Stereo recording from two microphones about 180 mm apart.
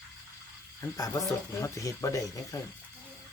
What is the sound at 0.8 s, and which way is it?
Speech, 20° left (ahead or behind).